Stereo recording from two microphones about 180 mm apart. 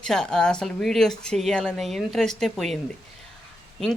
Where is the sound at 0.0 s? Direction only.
5° left (ahead or behind).